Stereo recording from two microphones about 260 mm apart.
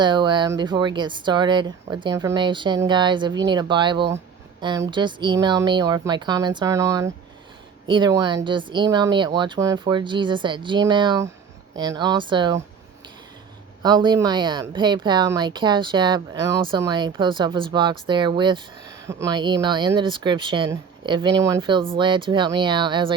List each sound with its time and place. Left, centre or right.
0.0 s speech: centre
13.8 s speech: centre